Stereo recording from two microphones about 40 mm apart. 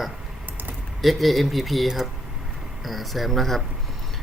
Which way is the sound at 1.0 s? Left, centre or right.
Centre.